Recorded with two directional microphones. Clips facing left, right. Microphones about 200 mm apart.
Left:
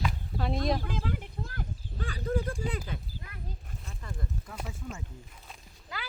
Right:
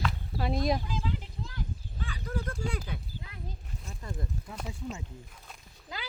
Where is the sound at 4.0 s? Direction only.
20° right (ahead or behind).